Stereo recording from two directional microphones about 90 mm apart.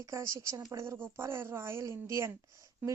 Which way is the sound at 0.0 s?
35° right (ahead or behind).